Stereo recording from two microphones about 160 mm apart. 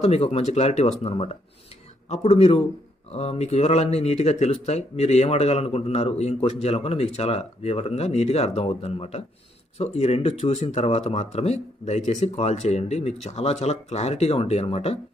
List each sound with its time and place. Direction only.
0.0 s speech: 40° left (ahead or behind)